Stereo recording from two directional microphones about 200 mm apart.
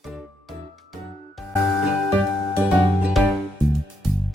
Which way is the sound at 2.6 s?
Centre (ahead or behind).